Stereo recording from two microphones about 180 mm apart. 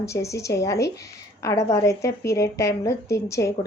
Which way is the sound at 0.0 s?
15° left (ahead or behind).